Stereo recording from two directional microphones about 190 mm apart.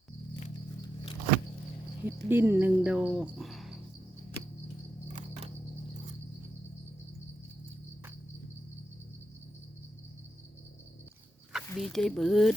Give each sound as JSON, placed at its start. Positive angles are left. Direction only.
{"t": 2.0, "sound": "speech", "side_deg": -10}
{"t": 5.1, "sound": "camera", "side_deg": -35}
{"t": 11.5, "sound": "speech", "side_deg": 0}